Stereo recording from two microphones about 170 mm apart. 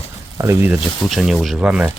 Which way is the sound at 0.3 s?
15° right (ahead or behind).